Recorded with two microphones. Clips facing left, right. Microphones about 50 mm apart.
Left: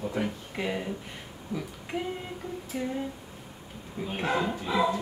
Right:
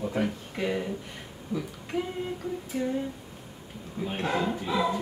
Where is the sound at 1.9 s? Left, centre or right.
Centre.